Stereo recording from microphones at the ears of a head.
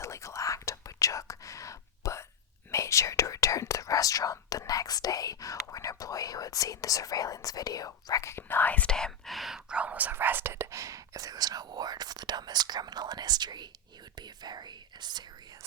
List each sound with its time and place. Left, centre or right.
0.0 s whispering: left
9.8 s whispering: right